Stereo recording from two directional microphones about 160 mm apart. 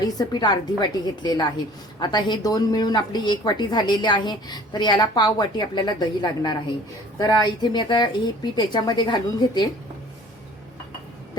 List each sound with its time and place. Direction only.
0.0 s a woman's voice: 25° left (ahead or behind)